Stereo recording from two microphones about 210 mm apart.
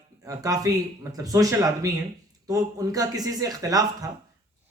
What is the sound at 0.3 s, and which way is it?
Speech, 15° right (ahead or behind).